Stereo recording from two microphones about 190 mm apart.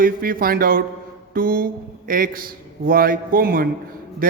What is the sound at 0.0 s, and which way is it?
A man's voice, 50° right (ahead or behind).